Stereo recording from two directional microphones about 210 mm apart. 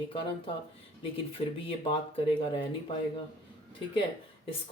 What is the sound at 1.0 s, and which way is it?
Speech, 25° left (ahead or behind).